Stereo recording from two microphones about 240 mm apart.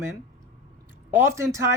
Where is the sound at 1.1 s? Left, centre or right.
Centre.